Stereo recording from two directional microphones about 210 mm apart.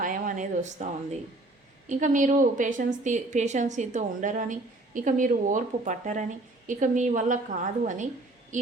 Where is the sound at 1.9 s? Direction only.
35° right (ahead or behind).